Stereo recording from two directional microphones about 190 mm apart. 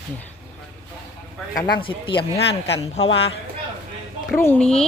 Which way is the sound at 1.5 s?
25° left (ahead or behind).